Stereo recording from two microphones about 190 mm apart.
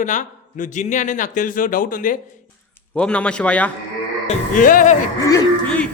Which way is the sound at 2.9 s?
5° left (ahead or behind).